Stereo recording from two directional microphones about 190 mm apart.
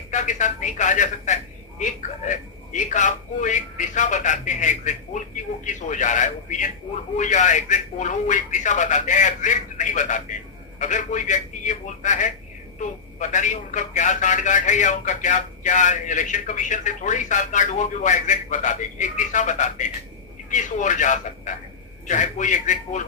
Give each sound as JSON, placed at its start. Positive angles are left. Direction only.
{"t": 0.1, "sound": "speech", "side_deg": 40}